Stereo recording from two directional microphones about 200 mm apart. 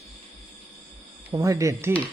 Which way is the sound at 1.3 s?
15° right (ahead or behind).